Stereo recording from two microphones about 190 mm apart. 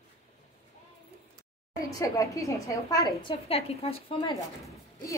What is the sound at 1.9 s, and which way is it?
A woman's voice, 20° left (ahead or behind).